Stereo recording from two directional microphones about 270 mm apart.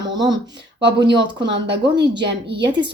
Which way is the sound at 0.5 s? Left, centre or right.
Right.